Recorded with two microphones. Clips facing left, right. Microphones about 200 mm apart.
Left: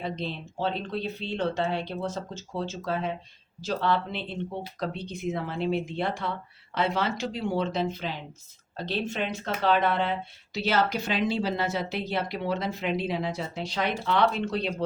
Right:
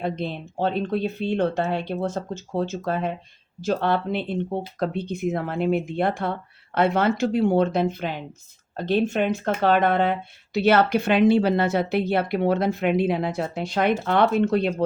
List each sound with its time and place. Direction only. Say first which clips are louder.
0.0 s speech: right 5 dB; 55° right (ahead or behind)